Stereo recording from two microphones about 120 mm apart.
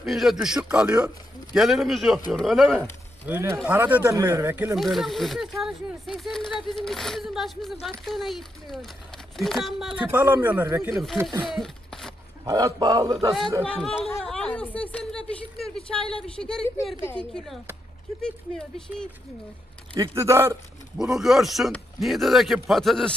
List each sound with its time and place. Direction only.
0.0 s a man's voice: centre (ahead or behind)
3.3 s a man's voice: 20° right (ahead or behind)
4.0 s speech: 30° right (ahead or behind)
4.7 s speech: centre (ahead or behind)
10.1 s speech: 15° right (ahead or behind)
10.9 s speech: centre (ahead or behind)
11.4 s a sound: centre (ahead or behind)
12.4 s speech: 30° right (ahead or behind)
13.6 s speech: 5° left (ahead or behind)
14.0 s a sound: 5° left (ahead or behind)
16.3 s speech: 5° left (ahead or behind)
20.0 s speech: 25° right (ahead or behind)
21.0 s speech: 5° right (ahead or behind)